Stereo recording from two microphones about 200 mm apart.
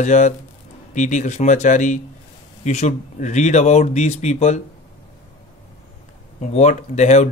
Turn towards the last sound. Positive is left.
turn(degrees=35)  # may be behind; listen again after turning